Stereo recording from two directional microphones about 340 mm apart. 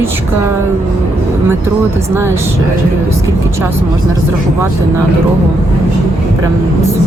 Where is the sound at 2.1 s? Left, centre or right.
Centre.